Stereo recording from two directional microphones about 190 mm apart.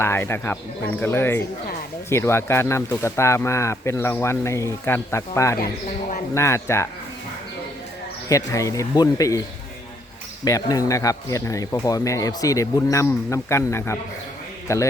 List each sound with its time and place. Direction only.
0.0 s speech: 10° left (ahead or behind)
8.3 s speech: 15° left (ahead or behind)
10.4 s speech: 20° left (ahead or behind)